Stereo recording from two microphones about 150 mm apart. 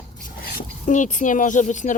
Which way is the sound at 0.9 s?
55° left (ahead or behind).